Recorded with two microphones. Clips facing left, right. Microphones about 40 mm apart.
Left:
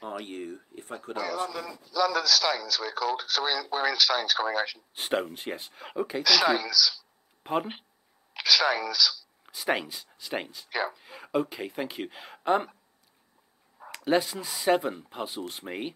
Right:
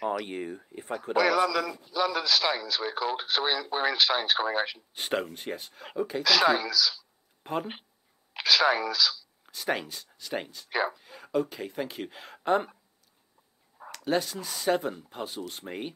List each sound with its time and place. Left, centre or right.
0.0 s a sound: right
0.3 s speech: centre
1.1 s a man's voice: right
1.9 s speech: right
4.9 s speech: centre
6.6 s speech: right
7.4 s speech: centre
8.3 s speech: right
9.5 s speech: centre
10.7 s speech: centre
11.0 s speech: centre
13.9 s speech: centre